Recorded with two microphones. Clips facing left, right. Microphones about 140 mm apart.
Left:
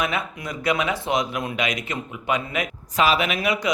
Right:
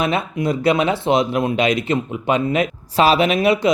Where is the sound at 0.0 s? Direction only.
30° right (ahead or behind).